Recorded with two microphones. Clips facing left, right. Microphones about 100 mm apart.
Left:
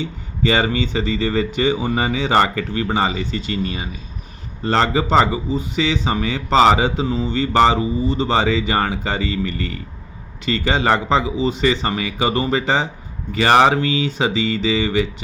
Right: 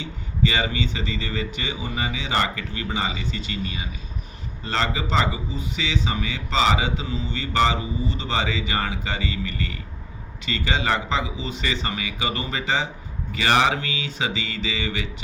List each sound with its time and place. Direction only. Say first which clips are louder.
0.0 s speech: left 3 dB; 45° left (ahead or behind)